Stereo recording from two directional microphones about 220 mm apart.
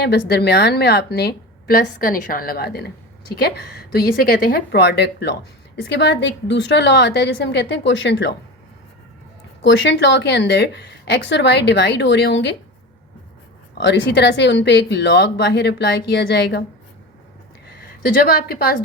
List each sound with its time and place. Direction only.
0.0 s a woman's voice: 50° left (ahead or behind)
9.6 s a woman's voice: 55° left (ahead or behind)
13.7 s a woman's voice: 50° left (ahead or behind)
17.7 s a woman's voice: 45° left (ahead or behind)